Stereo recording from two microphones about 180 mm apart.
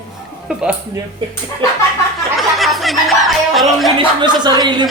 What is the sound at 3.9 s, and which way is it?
Speech, 25° right (ahead or behind).